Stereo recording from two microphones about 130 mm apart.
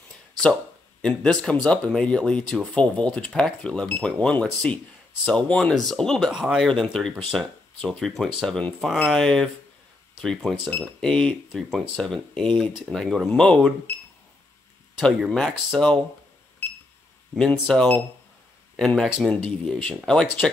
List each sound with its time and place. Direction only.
1.0 s speech: 5° left (ahead or behind)
15.0 s speech: centre (ahead or behind)
17.4 s speech: 5° left (ahead or behind)